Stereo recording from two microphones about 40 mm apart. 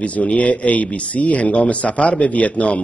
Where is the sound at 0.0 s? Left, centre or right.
Left.